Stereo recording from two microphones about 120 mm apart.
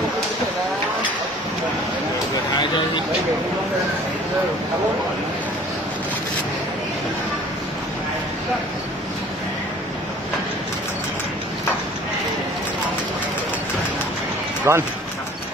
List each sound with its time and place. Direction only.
14.7 s speech: 25° right (ahead or behind)